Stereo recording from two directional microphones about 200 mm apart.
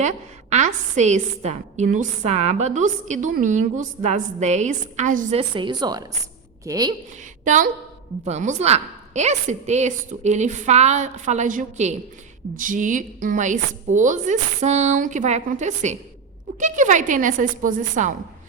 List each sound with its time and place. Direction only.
0.0 s a woman's voice: 35° right (ahead or behind); by 6.9 s 20° right (ahead or behind)
7.4 s a woman's voice: 40° right (ahead or behind)